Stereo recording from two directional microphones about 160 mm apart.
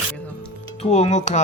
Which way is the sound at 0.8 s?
40° left (ahead or behind).